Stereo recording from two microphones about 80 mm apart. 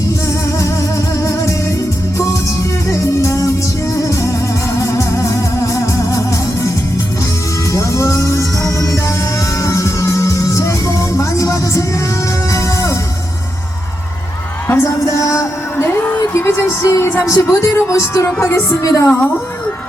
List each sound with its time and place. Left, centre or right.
1.2 s music: left
2.9 s music: left
7.7 s music: left
14.7 s a sound: left
16.0 s a sound: left
16.3 s music: left
18.8 s a woman's voice: left